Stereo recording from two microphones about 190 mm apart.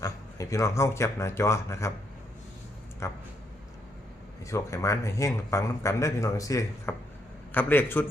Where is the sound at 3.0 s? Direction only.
15° left (ahead or behind).